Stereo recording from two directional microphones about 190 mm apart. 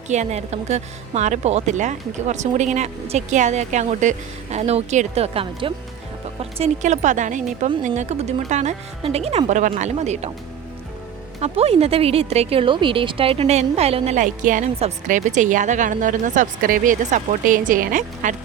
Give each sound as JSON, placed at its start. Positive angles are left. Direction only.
{"t": 0.1, "sound": "speech", "side_deg": -35}
{"t": 11.3, "sound": "speech", "side_deg": -35}